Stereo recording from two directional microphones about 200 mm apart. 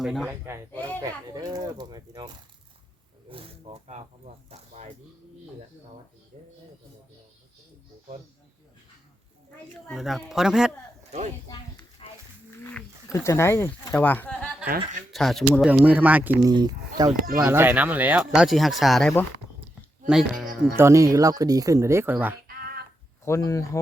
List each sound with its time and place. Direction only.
0.0 s speech: centre (ahead or behind)
1.0 s speech: 20° right (ahead or behind)
9.9 s speech: centre (ahead or behind)
11.4 s a sound: 20° left (ahead or behind)
12.6 s speech: 15° left (ahead or behind)
20.7 s speech: 15° right (ahead or behind)
22.4 s a sound: 50° right (ahead or behind)
23.2 s speech: 15° left (ahead or behind)